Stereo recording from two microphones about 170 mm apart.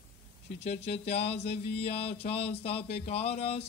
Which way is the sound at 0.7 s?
35° left (ahead or behind).